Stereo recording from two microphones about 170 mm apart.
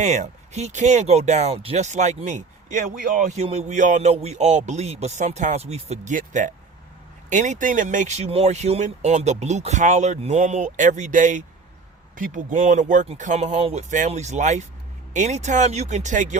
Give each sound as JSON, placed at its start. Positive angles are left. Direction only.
{"t": 0.0, "sound": "speech", "side_deg": -40}